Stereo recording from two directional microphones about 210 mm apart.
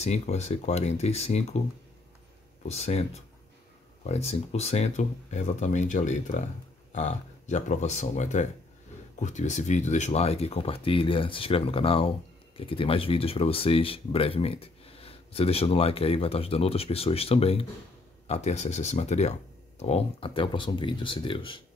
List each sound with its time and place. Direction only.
0.0 s speech: 30° left (ahead or behind)
2.7 s speech: 30° left (ahead or behind)